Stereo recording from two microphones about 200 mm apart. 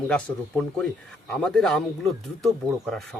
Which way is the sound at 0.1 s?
5° left (ahead or behind).